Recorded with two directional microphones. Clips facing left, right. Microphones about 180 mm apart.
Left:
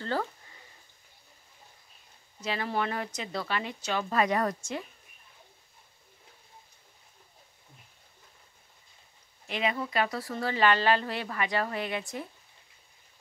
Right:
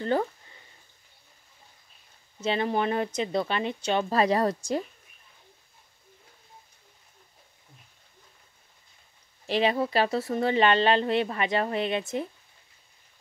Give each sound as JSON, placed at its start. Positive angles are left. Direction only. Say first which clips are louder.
{"t": 2.4, "sound": "speech", "louder": "right 5 dB", "side_deg": -25}
{"t": 9.5, "sound": "speech", "louder": "right 6 dB", "side_deg": -35}